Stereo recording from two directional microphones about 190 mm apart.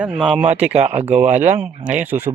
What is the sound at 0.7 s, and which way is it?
Speech, 35° right (ahead or behind).